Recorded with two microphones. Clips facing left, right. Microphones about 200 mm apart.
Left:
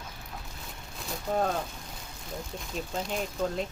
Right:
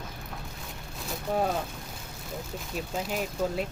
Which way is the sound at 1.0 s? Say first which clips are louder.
Right 1 dB; 5° right (ahead or behind).